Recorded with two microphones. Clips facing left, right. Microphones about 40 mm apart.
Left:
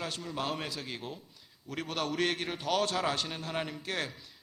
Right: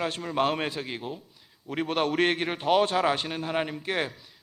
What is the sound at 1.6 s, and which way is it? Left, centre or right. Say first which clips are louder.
A man's voice: right 8 dB; right.